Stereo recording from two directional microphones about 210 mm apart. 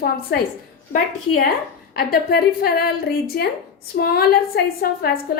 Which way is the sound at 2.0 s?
45° left (ahead or behind).